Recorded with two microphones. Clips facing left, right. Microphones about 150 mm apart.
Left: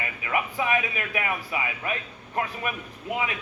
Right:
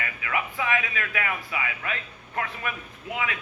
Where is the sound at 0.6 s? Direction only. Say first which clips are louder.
Left 2 dB; 20° left (ahead or behind).